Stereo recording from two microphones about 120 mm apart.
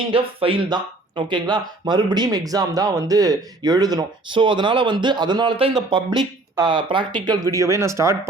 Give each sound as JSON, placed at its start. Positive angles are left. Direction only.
{"t": 0.1, "sound": "speech", "side_deg": -50}